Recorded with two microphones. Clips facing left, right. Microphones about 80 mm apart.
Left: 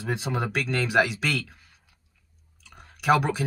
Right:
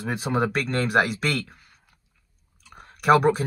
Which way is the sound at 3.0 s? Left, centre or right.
Right.